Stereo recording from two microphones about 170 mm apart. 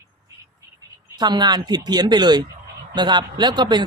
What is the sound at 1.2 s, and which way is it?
Speech, 25° right (ahead or behind).